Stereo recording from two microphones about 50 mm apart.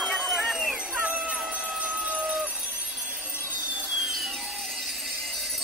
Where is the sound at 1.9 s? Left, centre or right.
Right.